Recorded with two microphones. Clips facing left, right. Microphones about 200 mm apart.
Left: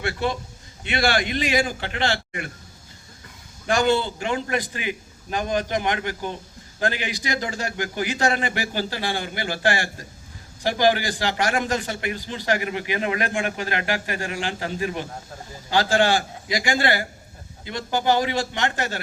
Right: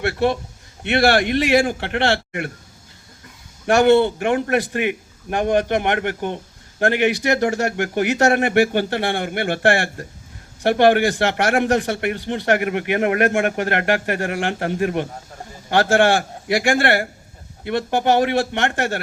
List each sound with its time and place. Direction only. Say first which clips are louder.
0.0 s a man's voice: right 6 dB; 60° right (ahead or behind)
3.7 s a man's voice: right 7 dB; 65° right (ahead or behind)
16.5 s a man's voice: right 5 dB; 65° right (ahead or behind)